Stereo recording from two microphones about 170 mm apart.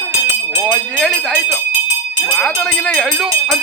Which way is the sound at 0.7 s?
5° left (ahead or behind).